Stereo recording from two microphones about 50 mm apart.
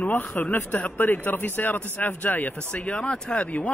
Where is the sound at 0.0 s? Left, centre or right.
Left.